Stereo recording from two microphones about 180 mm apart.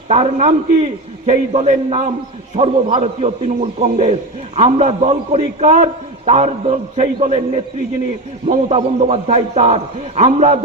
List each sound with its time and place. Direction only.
0.1 s a man's voice: 35° right (ahead or behind)